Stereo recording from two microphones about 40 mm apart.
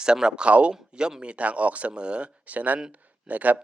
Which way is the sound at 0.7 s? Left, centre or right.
Centre.